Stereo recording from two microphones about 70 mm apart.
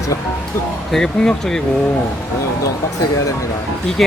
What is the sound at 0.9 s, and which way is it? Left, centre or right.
Speech, centre.